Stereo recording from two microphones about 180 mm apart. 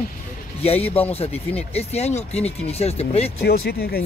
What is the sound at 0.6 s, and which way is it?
Speech, 35° left (ahead or behind).